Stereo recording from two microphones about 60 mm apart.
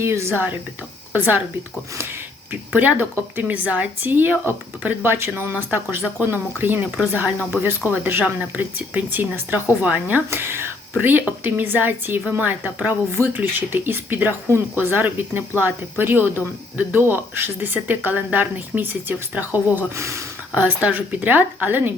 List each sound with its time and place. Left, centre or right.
0.0 s speech: right
1.1 s speech: right
2.5 s speech: right
6.2 s speech: right
10.2 s speech: right
20.0 s speech: right
20.6 s speech: right